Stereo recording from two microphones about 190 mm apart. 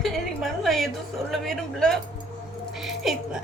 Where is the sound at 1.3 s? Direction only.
Centre (ahead or behind).